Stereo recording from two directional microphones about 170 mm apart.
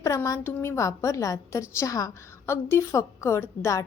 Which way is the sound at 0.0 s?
20° left (ahead or behind).